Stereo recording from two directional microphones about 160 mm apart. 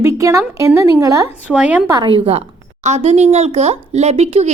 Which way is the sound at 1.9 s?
30° right (ahead or behind).